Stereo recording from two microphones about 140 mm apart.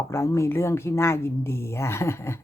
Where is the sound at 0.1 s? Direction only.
20° left (ahead or behind).